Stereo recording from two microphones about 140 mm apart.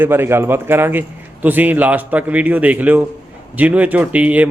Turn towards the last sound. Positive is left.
turn(degrees=-10)  # may be behind; listen again after turning